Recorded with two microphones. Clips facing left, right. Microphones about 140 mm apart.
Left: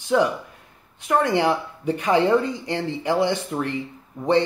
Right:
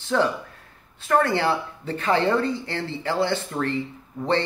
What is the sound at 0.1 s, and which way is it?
Speech, 15° left (ahead or behind).